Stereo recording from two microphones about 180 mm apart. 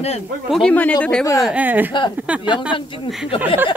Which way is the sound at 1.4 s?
10° right (ahead or behind).